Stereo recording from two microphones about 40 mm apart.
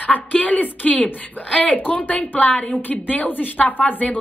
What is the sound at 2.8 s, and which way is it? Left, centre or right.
A woman's voice, left.